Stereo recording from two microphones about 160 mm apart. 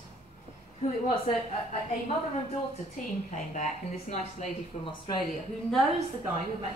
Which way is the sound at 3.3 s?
50° left (ahead or behind).